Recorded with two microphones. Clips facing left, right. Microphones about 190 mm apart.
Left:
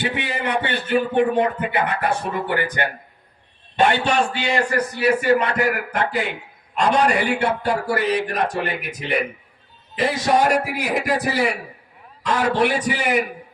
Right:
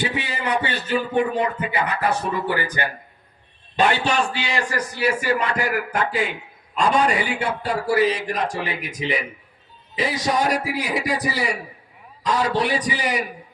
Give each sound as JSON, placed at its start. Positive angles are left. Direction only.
{"t": 0.0, "sound": "speech", "side_deg": 55}
{"t": 6.7, "sound": "speech", "side_deg": 65}